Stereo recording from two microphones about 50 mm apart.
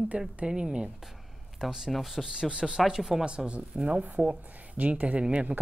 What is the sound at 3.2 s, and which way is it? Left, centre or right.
Speech, centre.